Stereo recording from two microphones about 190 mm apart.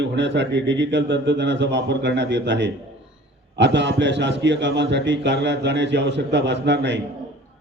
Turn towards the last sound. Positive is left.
turn(degrees=-65)  # may be behind; listen again after turning